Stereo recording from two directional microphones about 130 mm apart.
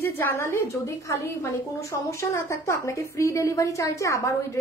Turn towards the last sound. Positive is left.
turn(degrees=25)  # may be behind; listen again after turning